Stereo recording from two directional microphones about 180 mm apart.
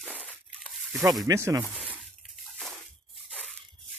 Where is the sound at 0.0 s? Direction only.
5° left (ahead or behind).